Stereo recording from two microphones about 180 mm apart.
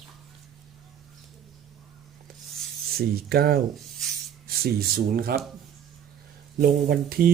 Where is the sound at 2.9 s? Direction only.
60° right (ahead or behind).